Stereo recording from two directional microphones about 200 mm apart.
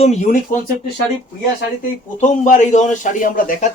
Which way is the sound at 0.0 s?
35° left (ahead or behind).